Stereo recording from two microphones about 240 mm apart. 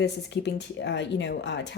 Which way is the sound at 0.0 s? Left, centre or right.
Left.